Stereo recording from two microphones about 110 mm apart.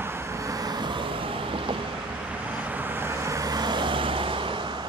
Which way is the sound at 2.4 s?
15° right (ahead or behind).